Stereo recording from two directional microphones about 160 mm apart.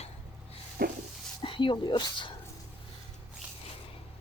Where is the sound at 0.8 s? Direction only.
65° right (ahead or behind).